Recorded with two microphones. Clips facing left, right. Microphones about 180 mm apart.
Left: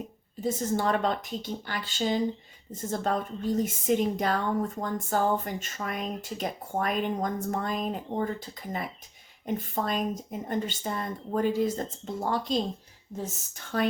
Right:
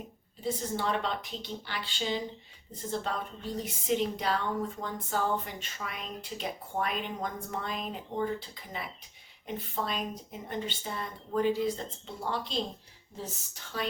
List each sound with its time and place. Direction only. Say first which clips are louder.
0.4 s speech: left 5 dB; 45° left (ahead or behind)